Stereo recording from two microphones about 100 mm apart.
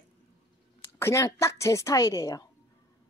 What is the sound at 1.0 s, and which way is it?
A woman's voice, 30° left (ahead or behind).